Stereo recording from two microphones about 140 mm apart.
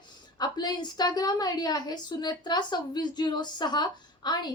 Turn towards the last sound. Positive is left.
turn(degrees=30)  # may be behind; listen again after turning